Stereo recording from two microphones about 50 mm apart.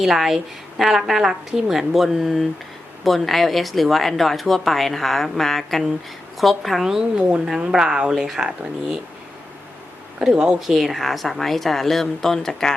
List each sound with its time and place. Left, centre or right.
0.0 s a woman's voice: centre
7.0 s a woman's voice: right
10.2 s a woman's voice: centre
10.6 s a woman's voice: centre